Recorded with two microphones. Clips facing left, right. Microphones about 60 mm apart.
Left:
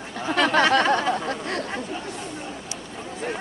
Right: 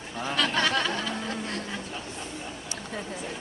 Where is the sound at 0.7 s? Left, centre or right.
Left.